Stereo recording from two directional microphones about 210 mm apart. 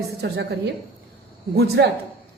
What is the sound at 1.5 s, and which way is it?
Speech, 50° right (ahead or behind).